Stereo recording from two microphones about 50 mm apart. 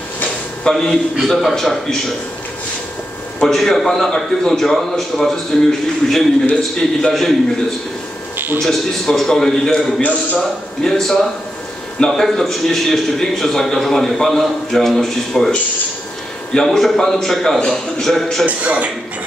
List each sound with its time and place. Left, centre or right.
0.7 s a man's voice: centre
3.4 s a man's voice: centre
8.6 s a man's voice: centre
16.5 s a man's voice: centre
18.4 s a man's voice: right